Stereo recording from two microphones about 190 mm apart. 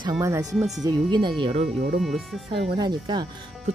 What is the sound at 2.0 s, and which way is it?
Speech, centre (ahead or behind).